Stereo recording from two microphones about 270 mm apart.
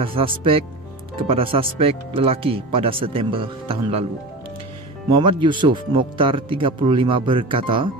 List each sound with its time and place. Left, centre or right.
0.0 s speech: centre
5.1 s speech: centre